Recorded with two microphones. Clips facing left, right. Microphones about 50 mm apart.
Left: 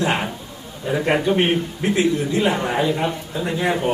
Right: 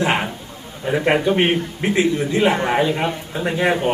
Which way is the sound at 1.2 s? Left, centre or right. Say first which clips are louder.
Right 1 dB; right.